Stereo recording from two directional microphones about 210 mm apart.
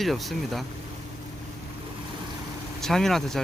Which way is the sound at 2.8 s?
Centre (ahead or behind).